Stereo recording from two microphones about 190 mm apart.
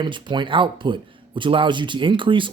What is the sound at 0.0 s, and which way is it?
Speech, 25° right (ahead or behind).